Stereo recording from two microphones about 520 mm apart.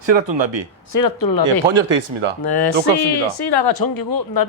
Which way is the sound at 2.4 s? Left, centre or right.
Left.